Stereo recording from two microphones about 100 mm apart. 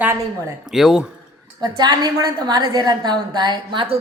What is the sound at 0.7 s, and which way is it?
Speech, 5° right (ahead or behind).